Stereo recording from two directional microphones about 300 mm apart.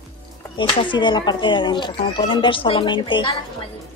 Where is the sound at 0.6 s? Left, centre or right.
Centre.